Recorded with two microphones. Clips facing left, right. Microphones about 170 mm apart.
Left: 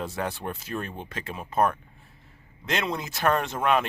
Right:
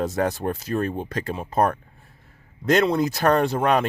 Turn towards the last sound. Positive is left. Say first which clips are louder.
# right 5 dB
turn(degrees=-40)  # may be behind; listen again after turning